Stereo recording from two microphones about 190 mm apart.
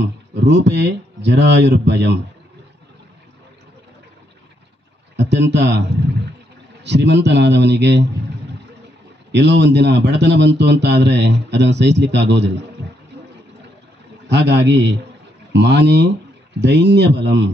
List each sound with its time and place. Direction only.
0.0 s speech: 65° right (ahead or behind)
5.1 s speech: 65° right (ahead or behind)
9.3 s speech: 65° right (ahead or behind)
14.3 s speech: 65° right (ahead or behind)